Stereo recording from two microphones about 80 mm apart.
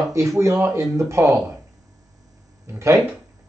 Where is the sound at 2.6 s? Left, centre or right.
Right.